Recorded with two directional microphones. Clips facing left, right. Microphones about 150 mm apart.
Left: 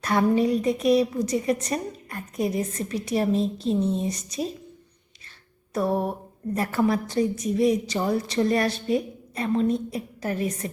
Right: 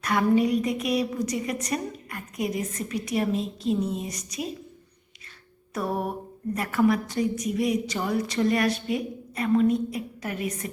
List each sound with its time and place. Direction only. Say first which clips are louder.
0.0 s a woman's voice: left 1 dB; 30° left (ahead or behind)
6.5 s a woman's voice: even; 30° left (ahead or behind)